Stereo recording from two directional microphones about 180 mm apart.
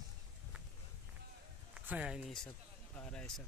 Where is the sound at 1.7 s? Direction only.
5° right (ahead or behind).